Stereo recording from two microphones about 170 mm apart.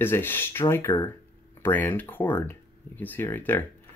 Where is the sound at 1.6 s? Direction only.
10° left (ahead or behind).